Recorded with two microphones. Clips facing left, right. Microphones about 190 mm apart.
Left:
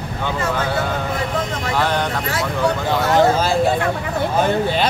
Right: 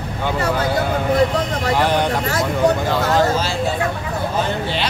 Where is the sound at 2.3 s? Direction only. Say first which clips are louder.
Right 2 dB; 40° right (ahead or behind).